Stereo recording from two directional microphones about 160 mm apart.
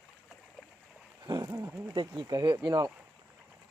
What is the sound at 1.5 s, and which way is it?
Speech, 15° right (ahead or behind).